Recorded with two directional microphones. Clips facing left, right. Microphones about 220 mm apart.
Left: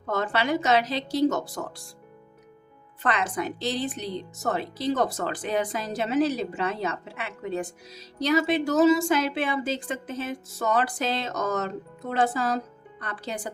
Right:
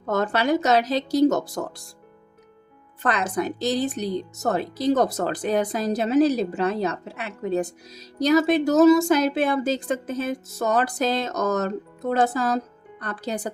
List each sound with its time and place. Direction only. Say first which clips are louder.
0.0 s speech: right 4 dB; 45° right (ahead or behind)
3.0 s speech: right 3 dB; 40° right (ahead or behind)